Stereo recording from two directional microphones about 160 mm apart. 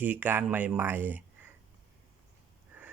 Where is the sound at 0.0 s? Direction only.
10° right (ahead or behind).